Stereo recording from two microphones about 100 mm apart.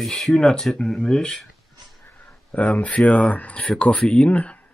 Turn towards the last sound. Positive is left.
turn(degrees=10)  # may be behind; listen again after turning